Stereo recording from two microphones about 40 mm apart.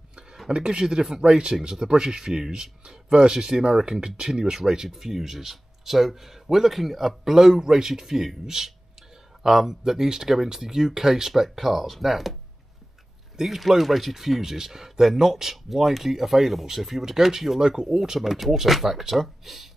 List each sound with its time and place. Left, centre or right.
0.5 s speech: right; by 12.4 s centre
13.4 s speech: centre